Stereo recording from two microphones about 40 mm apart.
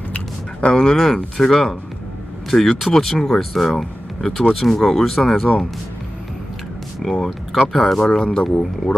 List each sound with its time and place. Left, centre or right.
0.1 s a sound: left
0.9 s speech: centre
7.0 s speech: centre
8.0 s speech: centre